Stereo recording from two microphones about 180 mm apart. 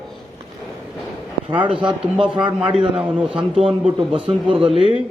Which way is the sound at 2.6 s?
5° right (ahead or behind).